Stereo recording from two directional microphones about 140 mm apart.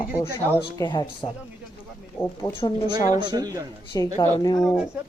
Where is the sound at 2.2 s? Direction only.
15° left (ahead or behind).